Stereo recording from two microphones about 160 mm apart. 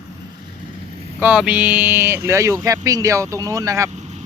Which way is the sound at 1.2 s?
5° right (ahead or behind).